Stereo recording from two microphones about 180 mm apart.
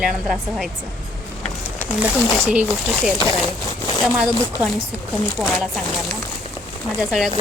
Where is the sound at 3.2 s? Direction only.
25° left (ahead or behind).